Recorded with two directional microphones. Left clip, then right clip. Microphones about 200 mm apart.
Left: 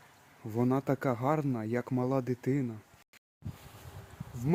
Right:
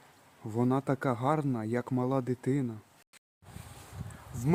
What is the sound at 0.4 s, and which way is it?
Speech, centre (ahead or behind).